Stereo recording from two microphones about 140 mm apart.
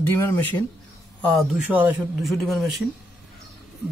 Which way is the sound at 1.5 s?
10° right (ahead or behind).